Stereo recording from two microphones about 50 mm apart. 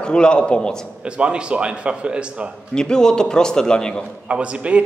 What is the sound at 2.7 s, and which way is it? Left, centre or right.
A man's voice, centre.